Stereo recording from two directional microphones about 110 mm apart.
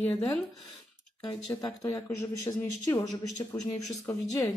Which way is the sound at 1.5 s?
30° left (ahead or behind).